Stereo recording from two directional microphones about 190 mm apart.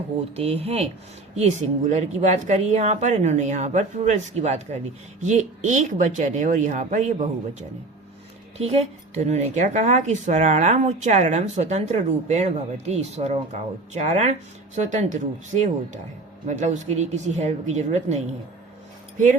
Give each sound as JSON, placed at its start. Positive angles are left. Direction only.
{"t": 0.3, "sound": "speech", "side_deg": -30}
{"t": 8.5, "sound": "speech", "side_deg": -35}